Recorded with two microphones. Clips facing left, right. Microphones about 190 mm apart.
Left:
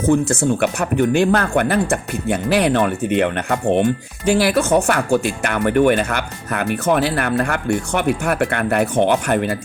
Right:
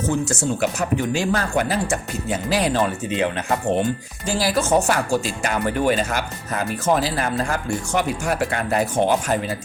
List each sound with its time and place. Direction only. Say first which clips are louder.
0.1 s speech: left 9 dB; 55° left (ahead or behind)